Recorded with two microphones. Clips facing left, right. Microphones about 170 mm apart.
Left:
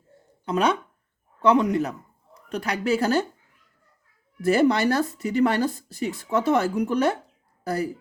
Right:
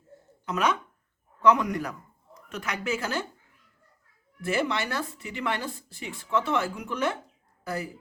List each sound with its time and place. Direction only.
0.4 s speech: 30° left (ahead or behind)
4.4 s speech: 40° left (ahead or behind)